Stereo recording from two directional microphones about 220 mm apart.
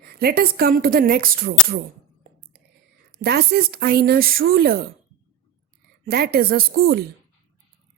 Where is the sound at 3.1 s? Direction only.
45° right (ahead or behind).